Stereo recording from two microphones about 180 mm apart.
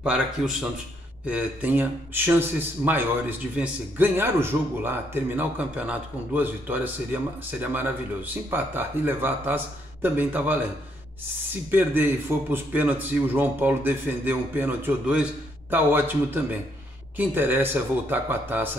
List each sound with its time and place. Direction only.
0.0 s a man's voice: 5° right (ahead or behind)
11.7 s a man's voice: 10° right (ahead or behind)